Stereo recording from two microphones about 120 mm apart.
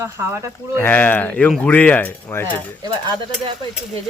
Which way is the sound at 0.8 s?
15° left (ahead or behind).